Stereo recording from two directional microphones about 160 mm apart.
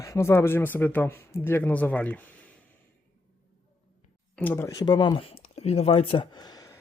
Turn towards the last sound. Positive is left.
turn(degrees=25)  # may be behind; listen again after turning